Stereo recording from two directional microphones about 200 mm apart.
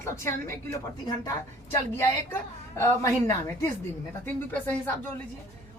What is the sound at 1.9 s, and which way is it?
A woman's voice, 15° left (ahead or behind).